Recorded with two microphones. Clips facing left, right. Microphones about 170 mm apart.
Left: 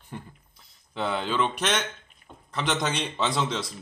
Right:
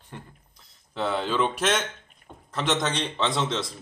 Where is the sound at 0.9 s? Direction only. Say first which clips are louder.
Right 1 dB; centre (ahead or behind).